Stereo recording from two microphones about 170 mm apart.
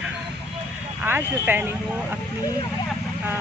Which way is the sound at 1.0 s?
10° right (ahead or behind).